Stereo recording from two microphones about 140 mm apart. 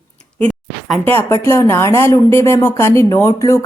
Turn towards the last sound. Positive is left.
turn(degrees=20)  # may be behind; listen again after turning